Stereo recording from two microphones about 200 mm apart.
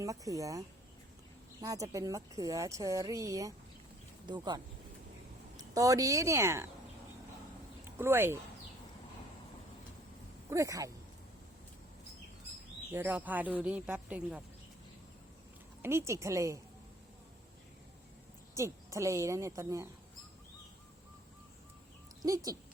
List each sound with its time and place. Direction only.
0.0 s a woman's voice: 15° right (ahead or behind)
1.6 s a woman's voice: 15° right (ahead or behind)
7.9 s speech: 10° right (ahead or behind)
10.5 s a woman's voice: 15° right (ahead or behind)
12.9 s a woman's voice: 10° right (ahead or behind)
15.8 s a woman's voice: 15° right (ahead or behind)
18.5 s a woman's voice: 15° right (ahead or behind)